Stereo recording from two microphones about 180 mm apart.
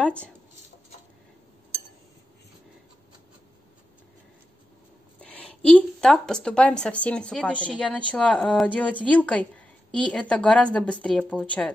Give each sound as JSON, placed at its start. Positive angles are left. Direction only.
{"t": 0.0, "sound": "speech", "side_deg": 5}
{"t": 5.2, "sound": "a woman's voice", "side_deg": 5}